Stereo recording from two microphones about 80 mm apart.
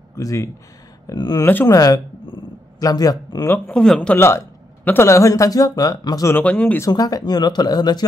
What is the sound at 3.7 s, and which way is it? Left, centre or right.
Speech, centre.